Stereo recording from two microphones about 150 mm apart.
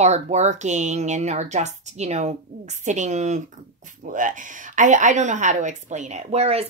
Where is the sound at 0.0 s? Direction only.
50° right (ahead or behind).